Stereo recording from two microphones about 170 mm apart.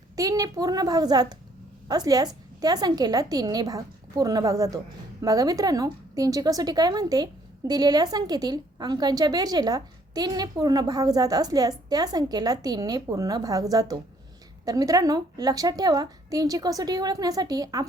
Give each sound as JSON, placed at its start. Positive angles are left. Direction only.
{"t": 0.2, "sound": "a woman's voice", "side_deg": -20}